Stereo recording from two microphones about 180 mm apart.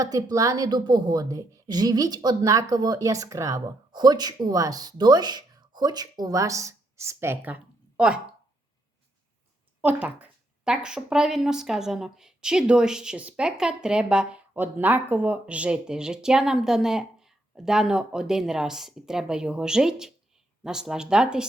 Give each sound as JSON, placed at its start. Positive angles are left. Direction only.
{"t": 0.0, "sound": "a woman's voice", "side_deg": -20}
{"t": 9.8, "sound": "a woman's voice", "side_deg": -10}